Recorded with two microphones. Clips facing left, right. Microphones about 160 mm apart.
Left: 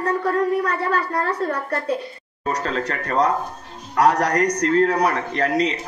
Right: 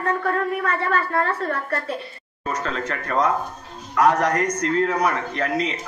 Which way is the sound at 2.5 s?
35° left (ahead or behind).